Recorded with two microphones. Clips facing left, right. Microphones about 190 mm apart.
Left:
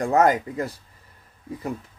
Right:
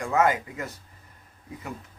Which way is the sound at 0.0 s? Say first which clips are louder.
Left 4 dB; 40° left (ahead or behind).